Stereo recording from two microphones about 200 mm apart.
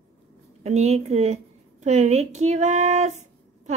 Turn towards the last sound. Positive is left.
turn(degrees=-35)  # may be behind; listen again after turning